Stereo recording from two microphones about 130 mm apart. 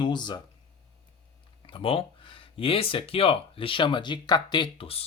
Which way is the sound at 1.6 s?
45° left (ahead or behind).